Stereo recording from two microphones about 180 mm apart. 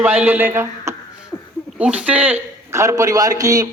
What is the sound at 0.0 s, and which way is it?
Speech, 5° right (ahead or behind).